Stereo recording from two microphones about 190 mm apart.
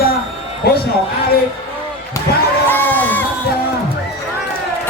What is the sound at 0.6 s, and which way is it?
Speech, 55° left (ahead or behind).